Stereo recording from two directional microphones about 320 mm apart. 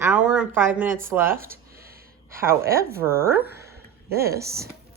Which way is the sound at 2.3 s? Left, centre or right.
Centre.